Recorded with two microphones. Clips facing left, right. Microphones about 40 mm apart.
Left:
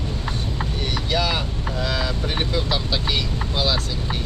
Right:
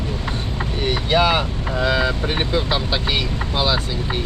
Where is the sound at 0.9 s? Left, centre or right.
Right.